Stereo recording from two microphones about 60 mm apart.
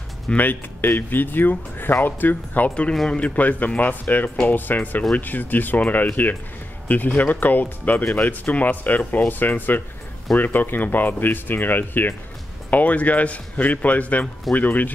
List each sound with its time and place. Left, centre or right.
0.4 s speech: left
2.7 s speech: centre